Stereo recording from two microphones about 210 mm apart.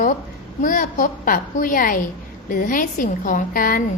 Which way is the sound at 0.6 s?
40° left (ahead or behind).